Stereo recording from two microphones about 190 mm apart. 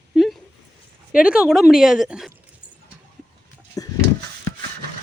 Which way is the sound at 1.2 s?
5° right (ahead or behind).